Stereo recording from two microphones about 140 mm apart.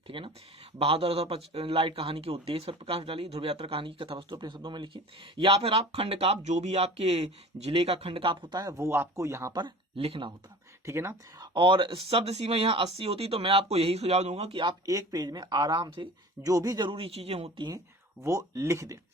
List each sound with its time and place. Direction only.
0.1 s speech: 35° right (ahead or behind); by 9.5 s 20° right (ahead or behind)
9.5 s speech: 30° right (ahead or behind)
10.8 s speech: 20° right (ahead or behind)
11.5 s speech: 35° right (ahead or behind)
14.6 s speech: 30° right (ahead or behind)
16.9 s speech: 45° right (ahead or behind)
18.2 s speech: 20° right (ahead or behind)